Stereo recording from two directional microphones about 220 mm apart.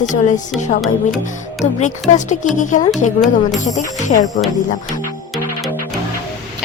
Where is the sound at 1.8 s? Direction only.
35° left (ahead or behind).